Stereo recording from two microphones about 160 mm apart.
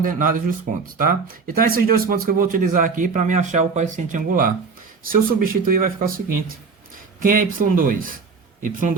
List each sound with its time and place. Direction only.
0.0 s speech: 55° right (ahead or behind)